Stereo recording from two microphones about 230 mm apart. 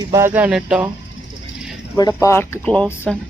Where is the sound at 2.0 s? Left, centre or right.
Centre.